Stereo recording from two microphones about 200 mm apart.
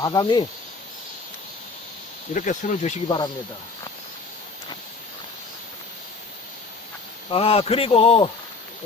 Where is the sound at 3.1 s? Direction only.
20° left (ahead or behind).